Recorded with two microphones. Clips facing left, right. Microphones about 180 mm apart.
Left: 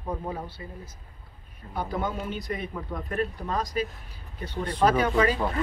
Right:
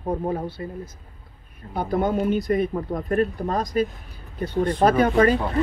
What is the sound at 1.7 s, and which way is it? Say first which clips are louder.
Speech: right 7 dB; 50° right (ahead or behind).